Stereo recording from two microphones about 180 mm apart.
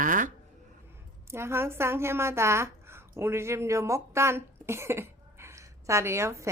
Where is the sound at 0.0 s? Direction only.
45° right (ahead or behind).